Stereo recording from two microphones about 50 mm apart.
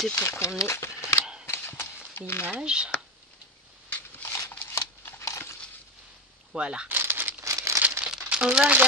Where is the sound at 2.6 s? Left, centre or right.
Centre.